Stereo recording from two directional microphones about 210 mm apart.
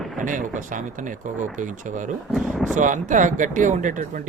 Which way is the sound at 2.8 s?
35° right (ahead or behind).